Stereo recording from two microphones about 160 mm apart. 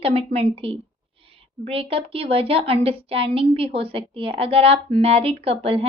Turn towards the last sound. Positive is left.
turn(degrees=-35)  # may be behind; listen again after turning